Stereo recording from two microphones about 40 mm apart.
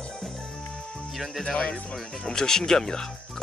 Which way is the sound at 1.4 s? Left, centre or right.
Left.